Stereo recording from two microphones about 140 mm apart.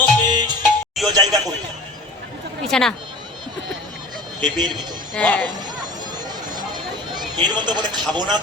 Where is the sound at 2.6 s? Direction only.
5° left (ahead or behind).